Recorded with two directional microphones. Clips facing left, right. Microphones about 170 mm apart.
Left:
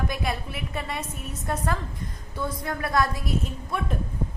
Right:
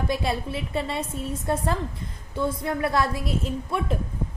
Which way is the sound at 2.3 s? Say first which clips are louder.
Right 5 dB; 25° right (ahead or behind).